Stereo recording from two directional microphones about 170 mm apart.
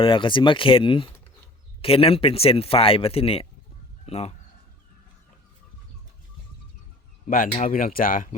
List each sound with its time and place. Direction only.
0.0 s speech: 30° left (ahead or behind)
7.3 s speech: 55° left (ahead or behind)